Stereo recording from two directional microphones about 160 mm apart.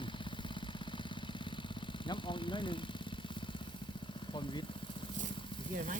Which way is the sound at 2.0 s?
30° left (ahead or behind).